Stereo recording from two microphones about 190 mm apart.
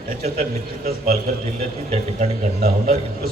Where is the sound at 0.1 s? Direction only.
50° right (ahead or behind).